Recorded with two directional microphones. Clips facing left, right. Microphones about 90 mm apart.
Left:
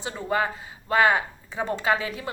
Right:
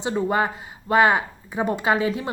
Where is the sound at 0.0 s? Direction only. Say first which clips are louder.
Right 4 dB; 25° right (ahead or behind).